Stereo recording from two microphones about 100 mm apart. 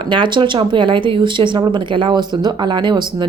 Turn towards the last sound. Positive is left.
turn(degrees=-50)  # may be behind; listen again after turning